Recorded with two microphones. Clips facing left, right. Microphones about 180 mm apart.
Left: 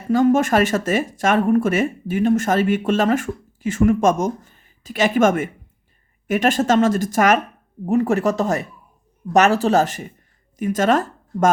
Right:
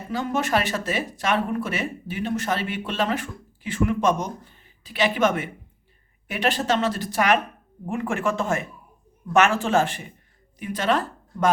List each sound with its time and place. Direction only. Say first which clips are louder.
0.1 s a woman's voice: left 9 dB; 45° left (ahead or behind)